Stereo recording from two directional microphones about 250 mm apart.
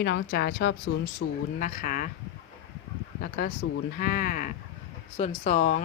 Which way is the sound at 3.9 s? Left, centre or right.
Left.